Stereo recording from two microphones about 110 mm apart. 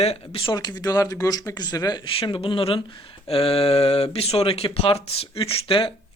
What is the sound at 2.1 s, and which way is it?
Speech, 55° left (ahead or behind).